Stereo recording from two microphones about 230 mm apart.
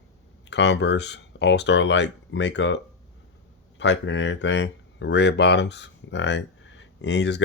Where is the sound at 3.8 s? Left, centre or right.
Left.